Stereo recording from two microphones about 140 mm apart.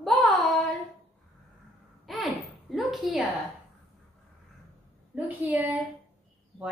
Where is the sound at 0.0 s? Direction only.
Centre (ahead or behind).